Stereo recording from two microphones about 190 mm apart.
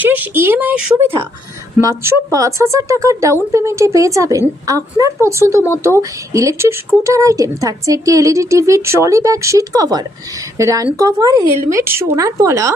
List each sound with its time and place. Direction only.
0.0 s speech: 10° right (ahead or behind)